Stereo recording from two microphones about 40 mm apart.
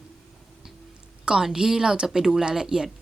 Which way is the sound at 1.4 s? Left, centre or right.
Centre.